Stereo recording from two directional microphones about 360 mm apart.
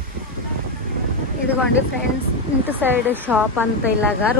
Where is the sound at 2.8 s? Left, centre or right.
Centre.